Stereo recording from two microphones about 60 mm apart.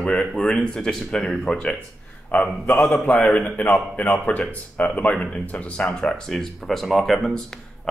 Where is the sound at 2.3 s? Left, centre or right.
Left.